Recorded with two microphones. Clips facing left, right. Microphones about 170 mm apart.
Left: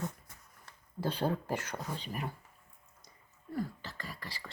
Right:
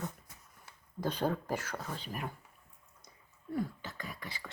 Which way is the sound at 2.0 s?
5° right (ahead or behind).